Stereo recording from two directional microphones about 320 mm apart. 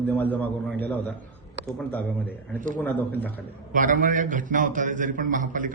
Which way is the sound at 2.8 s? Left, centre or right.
Centre.